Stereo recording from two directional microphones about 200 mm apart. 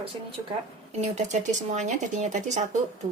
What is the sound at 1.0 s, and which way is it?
Speech, 35° right (ahead or behind).